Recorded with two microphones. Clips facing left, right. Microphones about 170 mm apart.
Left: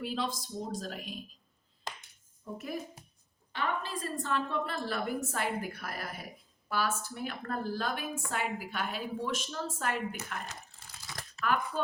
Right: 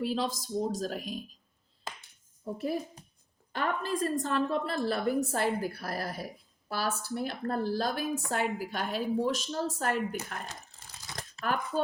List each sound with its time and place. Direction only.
0.0 s speech: 40° right (ahead or behind)
2.6 s a woman's voice: 35° right (ahead or behind)
3.5 s a woman's voice: 45° right (ahead or behind)
11.2 s a sound: 40° right (ahead or behind)